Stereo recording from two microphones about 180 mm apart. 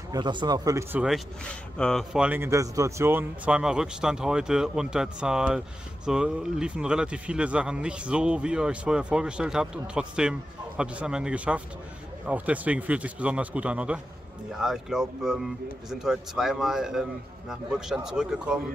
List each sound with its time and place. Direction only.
0.1 s speech: 25° right (ahead or behind)
1.0 s a man's voice: centre (ahead or behind)